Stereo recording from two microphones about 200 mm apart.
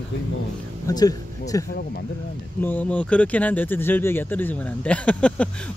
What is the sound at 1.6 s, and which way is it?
Speech, 50° left (ahead or behind).